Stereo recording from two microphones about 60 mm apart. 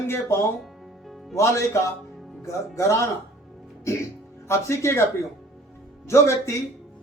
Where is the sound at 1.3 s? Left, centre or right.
Left.